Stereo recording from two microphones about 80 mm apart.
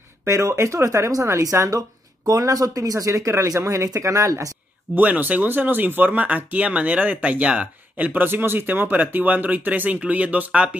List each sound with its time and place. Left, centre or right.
0.2 s speech: right
4.9 s speech: right